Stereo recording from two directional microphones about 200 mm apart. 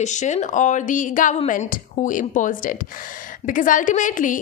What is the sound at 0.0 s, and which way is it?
A woman's voice, 35° left (ahead or behind).